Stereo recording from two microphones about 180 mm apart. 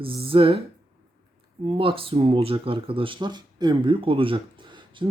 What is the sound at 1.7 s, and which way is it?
Speech, 30° right (ahead or behind).